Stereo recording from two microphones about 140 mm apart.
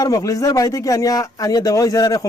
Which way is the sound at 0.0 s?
25° left (ahead or behind).